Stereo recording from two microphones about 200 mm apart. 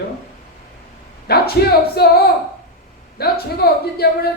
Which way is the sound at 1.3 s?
50° left (ahead or behind).